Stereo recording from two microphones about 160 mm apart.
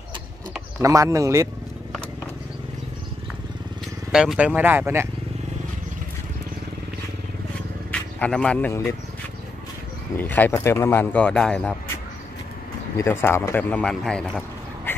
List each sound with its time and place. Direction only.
0.7 s speech: 20° right (ahead or behind)
4.1 s speech: 5° right (ahead or behind)
7.9 s speech: 5° left (ahead or behind)
10.1 s speech: 10° left (ahead or behind)
12.9 s speech: 15° left (ahead or behind)